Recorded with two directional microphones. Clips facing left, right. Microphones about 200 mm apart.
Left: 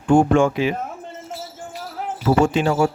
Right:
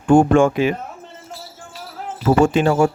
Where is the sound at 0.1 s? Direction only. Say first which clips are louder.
Right 2 dB; 50° right (ahead or behind).